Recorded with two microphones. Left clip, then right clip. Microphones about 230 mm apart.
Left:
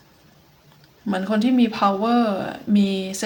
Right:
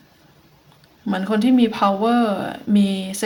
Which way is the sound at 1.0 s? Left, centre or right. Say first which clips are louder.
Right 2 dB; centre.